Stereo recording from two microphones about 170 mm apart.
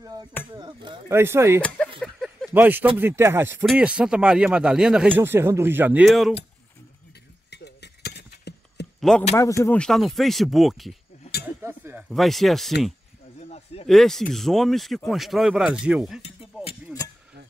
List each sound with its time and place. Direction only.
0.0 s speech: 20° right (ahead or behind)
1.1 s speech: 15° right (ahead or behind)
2.0 s a sound: centre (ahead or behind)
3.0 s speech: 15° right (ahead or behind)
6.0 s speech: centre (ahead or behind)
7.5 s a sound: 80° left
9.4 s speech: 15° left (ahead or behind)
9.8 s speech: centre (ahead or behind)
11.6 s chink: 15° right (ahead or behind)
12.1 s speech: centre (ahead or behind)
13.4 s a sound: 40° left (ahead or behind)
13.8 s speech: centre (ahead or behind)
16.5 s a sound: 5° right (ahead or behind)